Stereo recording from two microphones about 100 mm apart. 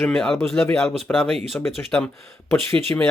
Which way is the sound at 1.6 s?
20° left (ahead or behind).